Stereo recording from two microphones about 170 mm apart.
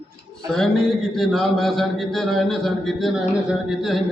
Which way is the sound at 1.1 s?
Centre (ahead or behind).